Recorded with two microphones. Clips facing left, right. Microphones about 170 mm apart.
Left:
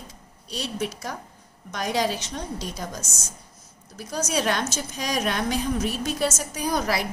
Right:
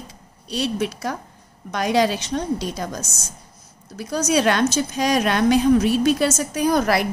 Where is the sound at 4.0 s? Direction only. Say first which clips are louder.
Right 7 dB; 65° right (ahead or behind).